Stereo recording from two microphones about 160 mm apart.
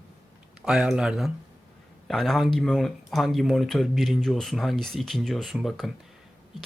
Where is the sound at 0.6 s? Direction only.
5° right (ahead or behind).